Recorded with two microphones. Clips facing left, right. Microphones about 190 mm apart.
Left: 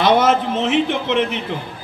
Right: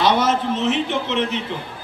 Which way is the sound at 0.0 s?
55° left (ahead or behind).